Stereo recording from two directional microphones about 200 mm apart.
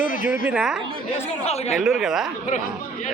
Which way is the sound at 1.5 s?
30° left (ahead or behind).